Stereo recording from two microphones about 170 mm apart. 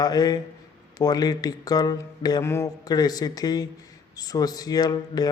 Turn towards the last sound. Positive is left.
turn(degrees=25)  # may be behind; listen again after turning